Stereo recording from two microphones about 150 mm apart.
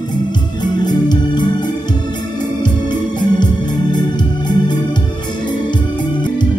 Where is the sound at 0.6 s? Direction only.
30° left (ahead or behind).